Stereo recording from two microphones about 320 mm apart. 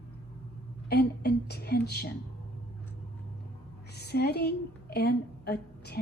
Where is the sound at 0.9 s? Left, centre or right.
Left.